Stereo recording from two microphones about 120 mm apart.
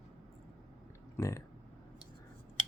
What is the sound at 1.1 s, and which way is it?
Speech, 25° left (ahead or behind).